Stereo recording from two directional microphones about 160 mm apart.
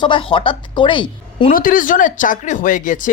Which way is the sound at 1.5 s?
60° left (ahead or behind).